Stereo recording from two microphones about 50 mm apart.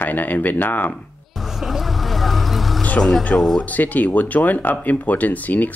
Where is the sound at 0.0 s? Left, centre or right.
Left.